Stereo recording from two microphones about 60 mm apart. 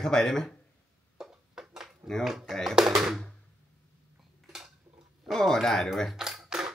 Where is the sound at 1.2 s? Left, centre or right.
Centre.